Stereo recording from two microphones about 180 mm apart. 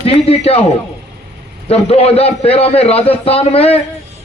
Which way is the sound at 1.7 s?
35° left (ahead or behind).